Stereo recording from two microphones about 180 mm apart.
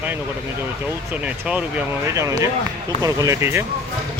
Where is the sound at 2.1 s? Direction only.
15° right (ahead or behind).